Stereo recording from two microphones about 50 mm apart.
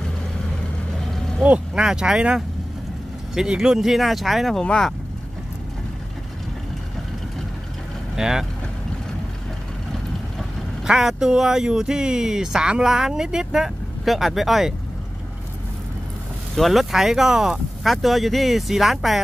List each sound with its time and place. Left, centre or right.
1.4 s speech: right; by 4.6 s centre
4.6 s speech: centre
8.2 s speech: centre
10.9 s speech: centre
16.5 s speech: centre